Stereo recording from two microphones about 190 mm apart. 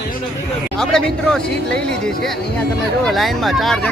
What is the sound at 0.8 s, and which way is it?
Speech, 5° left (ahead or behind).